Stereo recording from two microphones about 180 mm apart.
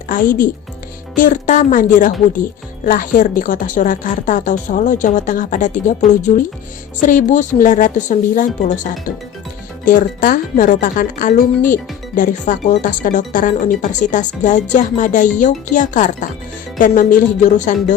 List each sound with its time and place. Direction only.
0.1 s speech: 50° left (ahead or behind)